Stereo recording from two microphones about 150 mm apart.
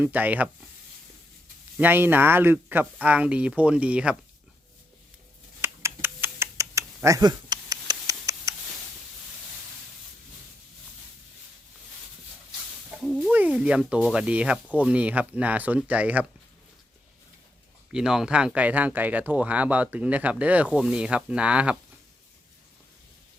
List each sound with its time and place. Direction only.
0.0 s speech: 10° right (ahead or behind)
1.8 s speech: 15° right (ahead or behind)
5.6 s typing: 15° right (ahead or behind)
13.0 s a sound: centre (ahead or behind)
14.8 s speech: 10° right (ahead or behind)
17.9 s speech: 5° right (ahead or behind)